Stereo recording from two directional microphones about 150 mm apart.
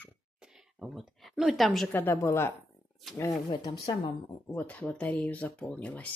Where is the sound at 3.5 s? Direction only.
25° left (ahead or behind).